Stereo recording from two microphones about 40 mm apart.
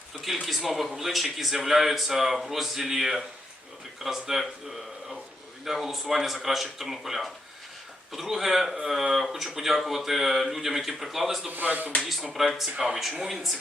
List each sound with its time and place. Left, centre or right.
0.4 s speech: centre
5.6 s speech: centre
11.5 s speech: right
12.0 s speech: centre